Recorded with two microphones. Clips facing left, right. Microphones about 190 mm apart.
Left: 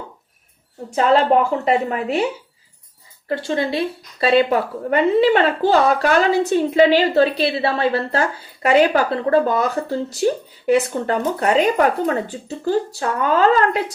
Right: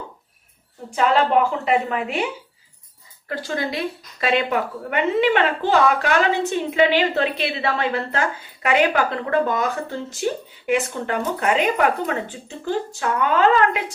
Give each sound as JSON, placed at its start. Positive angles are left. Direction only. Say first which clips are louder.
{"t": 1.3, "sound": "a woman's voice", "louder": "left 2 dB", "side_deg": 45}
{"t": 3.2, "sound": "a woman's voice", "louder": "left 5 dB", "side_deg": 25}